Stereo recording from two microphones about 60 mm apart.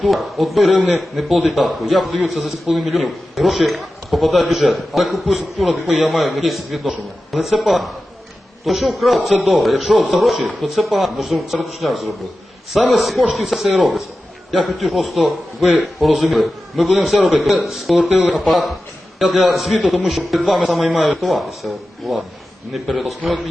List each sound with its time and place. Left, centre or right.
0.0 s a man's voice: centre